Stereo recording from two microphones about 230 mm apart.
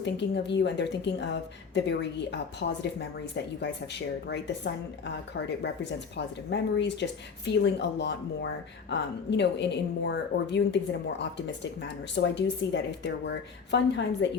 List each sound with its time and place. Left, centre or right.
0.0 s speech: left
12.1 s speech: left